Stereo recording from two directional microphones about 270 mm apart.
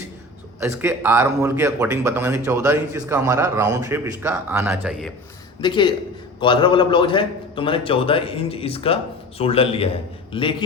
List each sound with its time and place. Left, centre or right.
0.6 s speech: centre
5.5 s a man's voice: centre